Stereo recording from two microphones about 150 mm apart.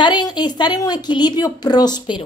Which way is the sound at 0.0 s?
30° left (ahead or behind).